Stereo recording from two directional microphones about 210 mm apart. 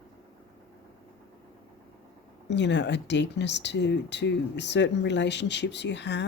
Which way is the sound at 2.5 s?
55° left (ahead or behind).